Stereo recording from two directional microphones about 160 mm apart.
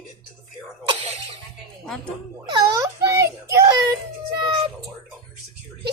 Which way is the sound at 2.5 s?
20° right (ahead or behind).